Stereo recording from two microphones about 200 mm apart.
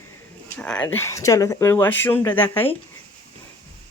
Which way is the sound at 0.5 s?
5° left (ahead or behind).